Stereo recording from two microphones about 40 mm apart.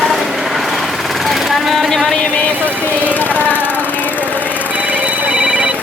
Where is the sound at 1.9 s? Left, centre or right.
Centre.